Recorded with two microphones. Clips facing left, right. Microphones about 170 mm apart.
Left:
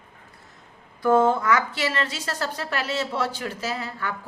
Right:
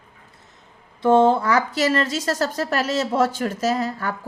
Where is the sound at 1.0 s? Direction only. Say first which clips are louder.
Right 3 dB; 25° right (ahead or behind).